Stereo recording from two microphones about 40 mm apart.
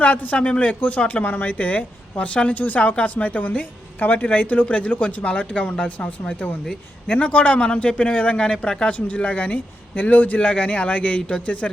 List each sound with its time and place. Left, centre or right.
0.0 s speech: left
7.1 s speech: left
8.5 s a man's voice: centre
8.9 s speech: left